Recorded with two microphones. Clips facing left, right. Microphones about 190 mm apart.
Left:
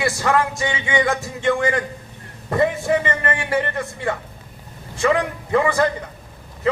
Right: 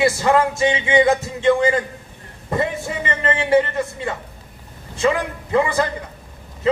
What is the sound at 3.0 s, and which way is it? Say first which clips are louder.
Speech: right 1 dB; 25° right (ahead or behind).